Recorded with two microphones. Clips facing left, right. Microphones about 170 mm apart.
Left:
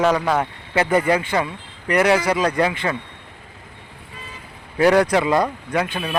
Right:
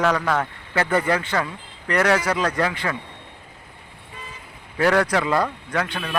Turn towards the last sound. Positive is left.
turn(degrees=15)  # may be behind; listen again after turning